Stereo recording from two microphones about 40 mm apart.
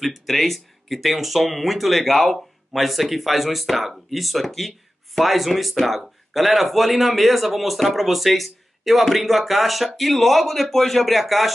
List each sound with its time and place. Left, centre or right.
0.0 s speech: centre